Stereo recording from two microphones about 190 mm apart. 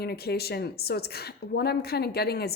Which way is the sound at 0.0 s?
55° left (ahead or behind).